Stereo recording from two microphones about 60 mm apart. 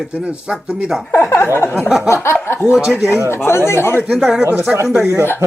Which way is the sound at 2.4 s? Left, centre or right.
Left.